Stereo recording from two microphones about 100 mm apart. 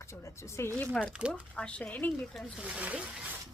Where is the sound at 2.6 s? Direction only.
15° right (ahead or behind).